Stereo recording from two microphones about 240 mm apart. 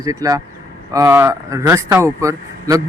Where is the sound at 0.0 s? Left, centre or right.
Centre.